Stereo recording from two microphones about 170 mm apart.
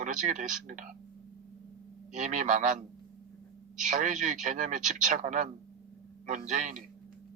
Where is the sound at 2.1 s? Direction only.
45° right (ahead or behind).